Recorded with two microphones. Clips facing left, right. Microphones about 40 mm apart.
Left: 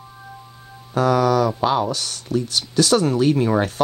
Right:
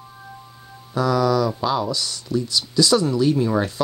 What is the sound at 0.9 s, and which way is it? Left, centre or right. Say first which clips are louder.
Speech: left 2 dB; left.